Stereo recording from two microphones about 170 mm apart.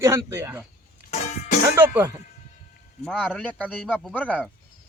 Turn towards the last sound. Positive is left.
turn(degrees=10)  # may be behind; listen again after turning